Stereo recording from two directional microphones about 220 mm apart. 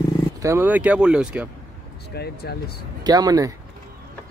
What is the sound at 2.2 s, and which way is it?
Speech, 45° left (ahead or behind).